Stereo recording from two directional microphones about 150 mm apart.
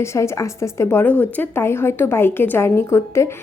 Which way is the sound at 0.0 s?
20° left (ahead or behind).